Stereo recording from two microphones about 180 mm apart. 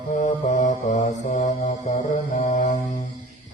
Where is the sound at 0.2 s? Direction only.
45° left (ahead or behind).